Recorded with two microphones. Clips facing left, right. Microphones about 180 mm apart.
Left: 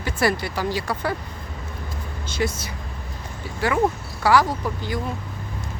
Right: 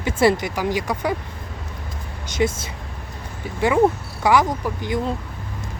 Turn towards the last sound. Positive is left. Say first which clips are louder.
# right 2 dB
turn(degrees=-20)  # may be behind; listen again after turning